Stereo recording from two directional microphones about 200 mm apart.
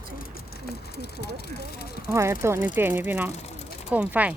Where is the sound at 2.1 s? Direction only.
15° right (ahead or behind).